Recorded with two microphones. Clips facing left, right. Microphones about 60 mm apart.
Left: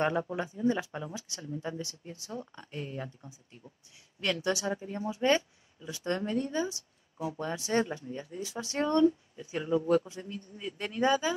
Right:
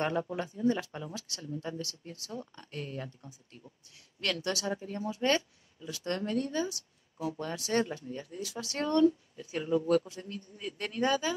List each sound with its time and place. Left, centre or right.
0.0 s speech: left